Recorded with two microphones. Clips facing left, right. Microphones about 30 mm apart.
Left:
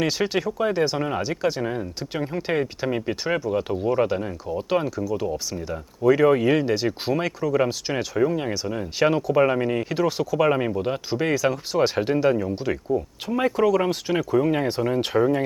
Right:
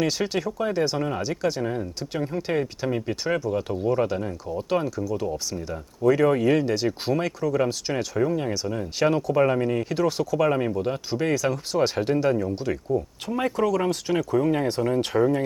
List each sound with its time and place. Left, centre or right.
0.0 s speech: centre